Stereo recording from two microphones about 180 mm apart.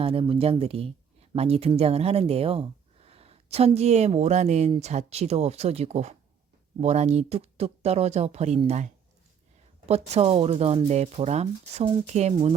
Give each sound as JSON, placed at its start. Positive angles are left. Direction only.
{"t": 0.0, "sound": "speech", "side_deg": -30}